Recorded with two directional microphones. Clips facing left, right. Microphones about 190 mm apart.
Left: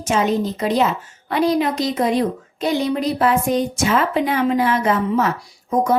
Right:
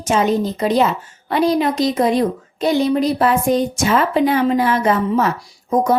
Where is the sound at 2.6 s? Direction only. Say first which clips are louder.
Right 4 dB; 35° right (ahead or behind).